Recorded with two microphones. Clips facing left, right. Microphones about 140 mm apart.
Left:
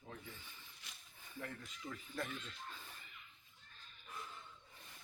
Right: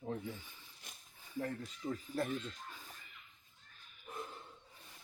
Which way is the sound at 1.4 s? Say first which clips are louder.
Right 8 dB; 35° right (ahead or behind).